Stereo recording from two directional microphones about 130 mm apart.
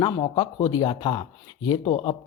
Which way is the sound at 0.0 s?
40° left (ahead or behind).